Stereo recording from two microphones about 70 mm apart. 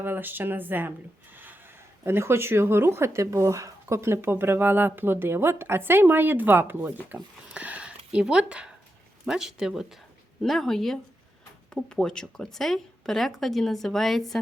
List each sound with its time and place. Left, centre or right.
0.0 s speech: right
2.0 s speech: right
7.4 s a sound: right
9.2 s speech: centre